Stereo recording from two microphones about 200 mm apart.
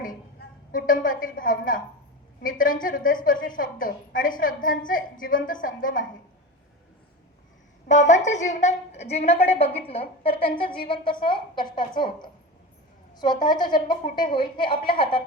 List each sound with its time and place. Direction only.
0.0 s a sound: 45° left (ahead or behind)
2.4 s a woman's voice: 45° left (ahead or behind)
7.9 s a woman's voice: 35° left (ahead or behind)
13.1 s a woman's voice: 20° left (ahead or behind)